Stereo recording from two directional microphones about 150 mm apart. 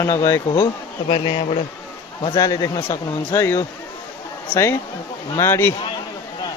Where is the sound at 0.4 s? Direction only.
30° left (ahead or behind).